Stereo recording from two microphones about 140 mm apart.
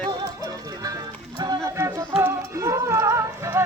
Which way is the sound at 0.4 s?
25° right (ahead or behind).